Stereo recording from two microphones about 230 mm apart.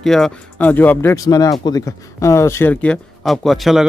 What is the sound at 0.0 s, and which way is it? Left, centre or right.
A man's voice, centre.